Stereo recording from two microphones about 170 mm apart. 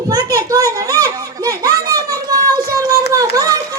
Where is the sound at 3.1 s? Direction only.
15° right (ahead or behind).